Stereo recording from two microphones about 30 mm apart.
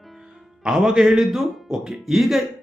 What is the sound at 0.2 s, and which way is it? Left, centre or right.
Music, centre.